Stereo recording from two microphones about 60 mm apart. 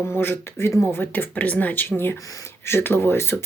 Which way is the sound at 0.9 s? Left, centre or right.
Left.